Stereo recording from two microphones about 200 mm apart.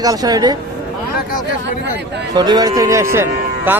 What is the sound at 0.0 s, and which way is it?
Speech, 20° right (ahead or behind).